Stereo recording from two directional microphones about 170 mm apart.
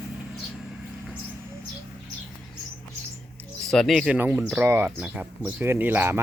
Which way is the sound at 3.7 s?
Centre (ahead or behind).